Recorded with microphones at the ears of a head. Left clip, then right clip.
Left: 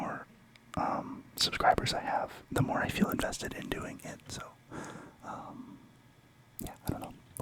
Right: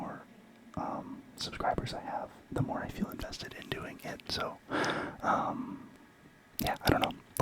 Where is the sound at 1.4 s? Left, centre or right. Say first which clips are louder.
Left 7 dB; left.